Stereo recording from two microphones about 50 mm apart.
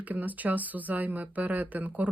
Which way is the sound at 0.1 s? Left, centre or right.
Right.